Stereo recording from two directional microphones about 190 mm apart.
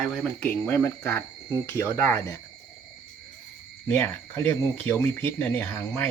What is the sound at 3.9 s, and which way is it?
Speech, 10° left (ahead or behind).